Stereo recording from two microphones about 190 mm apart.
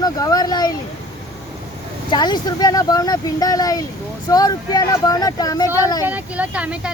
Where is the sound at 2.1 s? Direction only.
20° left (ahead or behind).